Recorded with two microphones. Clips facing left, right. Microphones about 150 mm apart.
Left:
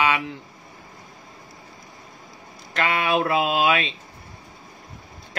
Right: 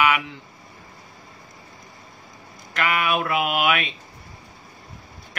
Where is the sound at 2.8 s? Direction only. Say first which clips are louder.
Left 1 dB; 30° left (ahead or behind).